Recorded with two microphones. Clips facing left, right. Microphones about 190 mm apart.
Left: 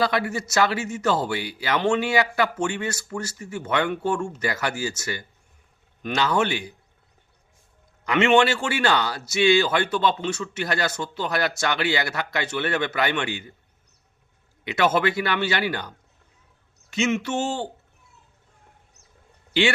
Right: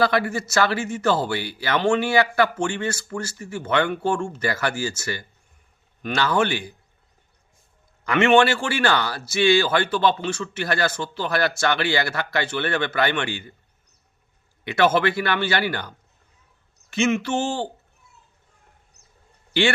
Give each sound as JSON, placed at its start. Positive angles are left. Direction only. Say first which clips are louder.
{"t": 0.0, "sound": "speech", "louder": "right 3 dB", "side_deg": 20}
{"t": 8.0, "sound": "speech", "louder": "right 2 dB", "side_deg": 20}
{"t": 14.6, "sound": "a man's voice", "louder": "right 2 dB", "side_deg": 20}